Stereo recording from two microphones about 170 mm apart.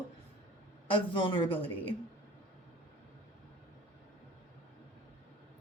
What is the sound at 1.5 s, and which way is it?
Speech, 10° left (ahead or behind).